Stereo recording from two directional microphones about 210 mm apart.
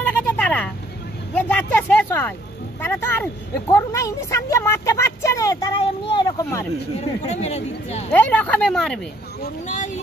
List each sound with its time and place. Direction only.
0.0 s vehicle: 5° left (ahead or behind)
1.3 s a sound: 10° left (ahead or behind)
2.8 s a woman's voice: 10° left (ahead or behind)
7.2 s speech: 30° left (ahead or behind)
8.1 s a woman's voice: 5° left (ahead or behind)